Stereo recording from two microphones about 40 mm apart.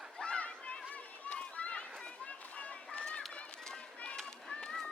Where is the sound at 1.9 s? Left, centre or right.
Left.